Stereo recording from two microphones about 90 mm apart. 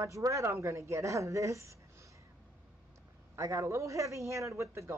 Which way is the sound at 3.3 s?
35° right (ahead or behind).